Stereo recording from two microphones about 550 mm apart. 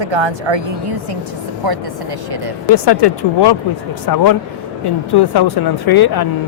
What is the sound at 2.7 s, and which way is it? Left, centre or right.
Speech, left.